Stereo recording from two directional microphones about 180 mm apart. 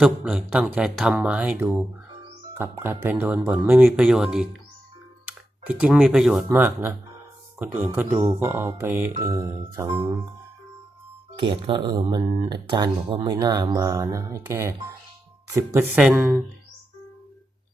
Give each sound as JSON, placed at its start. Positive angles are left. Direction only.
{"t": 0.0, "sound": "speech", "side_deg": -5}
{"t": 2.6, "sound": "music", "side_deg": -10}
{"t": 5.2, "sound": "speech", "side_deg": -5}
{"t": 7.9, "sound": "music", "side_deg": -5}
{"t": 9.9, "sound": "speech", "side_deg": -30}
{"t": 11.3, "sound": "speech", "side_deg": -30}
{"t": 15.5, "sound": "music", "side_deg": -10}